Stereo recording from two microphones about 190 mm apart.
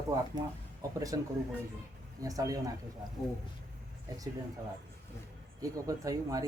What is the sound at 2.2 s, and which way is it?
Speech, 20° right (ahead or behind).